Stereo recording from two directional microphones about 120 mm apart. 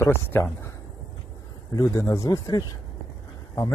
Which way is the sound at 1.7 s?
30° left (ahead or behind).